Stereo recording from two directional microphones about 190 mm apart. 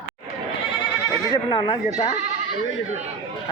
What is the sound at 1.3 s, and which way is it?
Speech, 25° left (ahead or behind).